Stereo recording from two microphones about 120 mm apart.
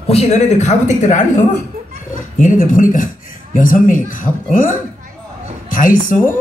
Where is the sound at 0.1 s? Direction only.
65° left (ahead or behind); by 1.4 s 90° left.